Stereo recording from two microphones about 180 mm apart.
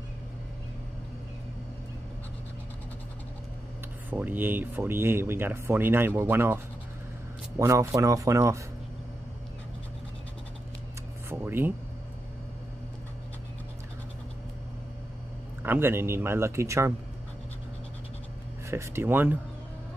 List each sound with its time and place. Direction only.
4.1 s speech: 10° right (ahead or behind)
11.2 s a sound: 10° right (ahead or behind)
15.6 s speech: 10° right (ahead or behind)
18.7 s speech: 15° right (ahead or behind)